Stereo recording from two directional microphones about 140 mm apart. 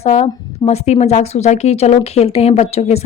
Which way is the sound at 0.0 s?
45° left (ahead or behind).